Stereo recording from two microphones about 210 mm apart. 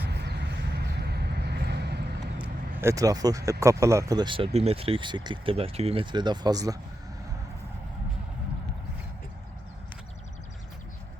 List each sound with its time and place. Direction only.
0.1 s vehicle: 55° right (ahead or behind)
2.4 s vehicle: 15° right (ahead or behind)
3.6 s speech: 15° right (ahead or behind)